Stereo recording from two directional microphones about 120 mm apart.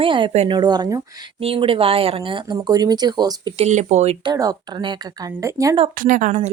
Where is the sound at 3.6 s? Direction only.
70° right (ahead or behind).